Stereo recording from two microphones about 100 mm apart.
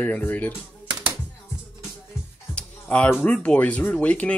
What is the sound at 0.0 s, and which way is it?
Speech, 15° left (ahead or behind).